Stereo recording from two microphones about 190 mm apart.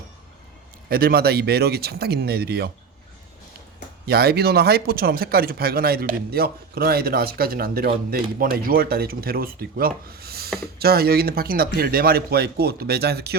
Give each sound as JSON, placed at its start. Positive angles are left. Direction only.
{"t": 0.9, "sound": "speech", "side_deg": -55}
{"t": 4.0, "sound": "a man's voice", "side_deg": -55}